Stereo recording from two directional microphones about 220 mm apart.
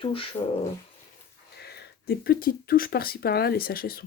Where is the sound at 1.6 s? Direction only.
45° left (ahead or behind).